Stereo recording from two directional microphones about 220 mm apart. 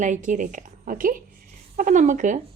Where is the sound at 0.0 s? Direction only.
35° right (ahead or behind).